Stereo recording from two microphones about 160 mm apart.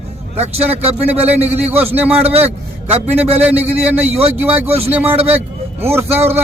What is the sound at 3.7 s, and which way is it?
Speech, 40° right (ahead or behind).